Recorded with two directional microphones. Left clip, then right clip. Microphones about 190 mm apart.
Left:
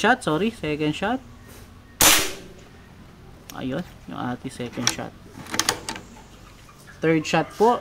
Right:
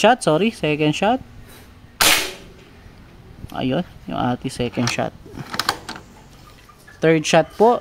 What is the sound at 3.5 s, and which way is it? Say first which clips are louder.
Speech: right 8 dB; 45° right (ahead or behind).